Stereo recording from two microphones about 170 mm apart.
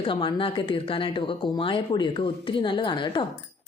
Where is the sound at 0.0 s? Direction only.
30° left (ahead or behind).